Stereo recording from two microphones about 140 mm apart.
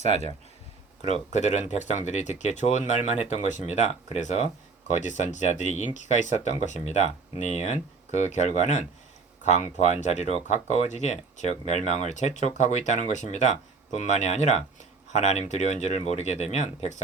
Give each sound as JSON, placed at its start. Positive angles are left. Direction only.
{"t": 1.0, "sound": "speech", "side_deg": 55}